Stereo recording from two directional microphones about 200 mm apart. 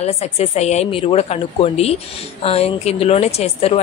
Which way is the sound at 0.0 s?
30° left (ahead or behind).